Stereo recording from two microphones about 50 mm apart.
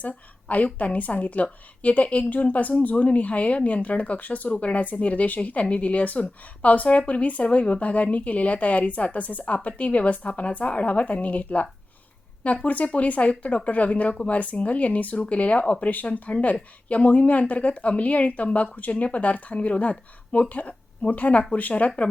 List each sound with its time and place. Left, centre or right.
0.0 s speech: left